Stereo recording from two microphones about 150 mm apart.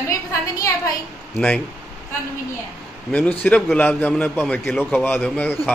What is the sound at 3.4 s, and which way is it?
A man's voice, 10° left (ahead or behind).